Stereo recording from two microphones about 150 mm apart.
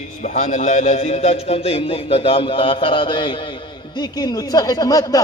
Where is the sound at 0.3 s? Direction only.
50° left (ahead or behind).